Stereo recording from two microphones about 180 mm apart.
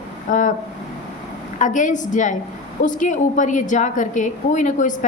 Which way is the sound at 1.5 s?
45° left (ahead or behind).